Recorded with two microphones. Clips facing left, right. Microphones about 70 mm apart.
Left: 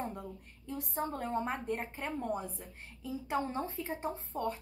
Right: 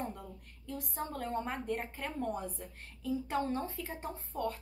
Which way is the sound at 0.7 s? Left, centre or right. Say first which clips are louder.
Left 3 dB; centre.